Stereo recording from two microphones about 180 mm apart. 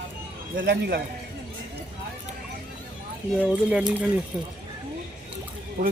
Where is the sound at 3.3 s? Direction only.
5° right (ahead or behind).